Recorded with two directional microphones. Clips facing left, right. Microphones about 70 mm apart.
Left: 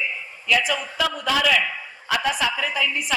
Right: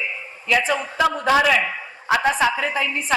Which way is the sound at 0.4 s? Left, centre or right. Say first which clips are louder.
Right 2 dB; right.